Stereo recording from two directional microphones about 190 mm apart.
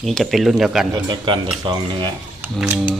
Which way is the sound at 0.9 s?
25° right (ahead or behind).